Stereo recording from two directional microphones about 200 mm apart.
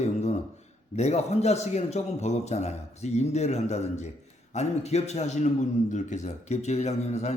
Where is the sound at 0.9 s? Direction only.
35° left (ahead or behind).